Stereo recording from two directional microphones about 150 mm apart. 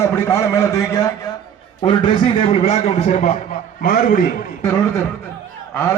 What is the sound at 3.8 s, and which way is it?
Speech, 65° left (ahead or behind).